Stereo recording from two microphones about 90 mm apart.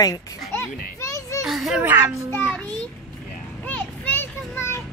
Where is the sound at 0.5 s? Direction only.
30° left (ahead or behind).